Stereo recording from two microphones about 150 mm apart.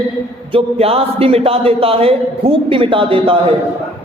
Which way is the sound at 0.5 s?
40° right (ahead or behind).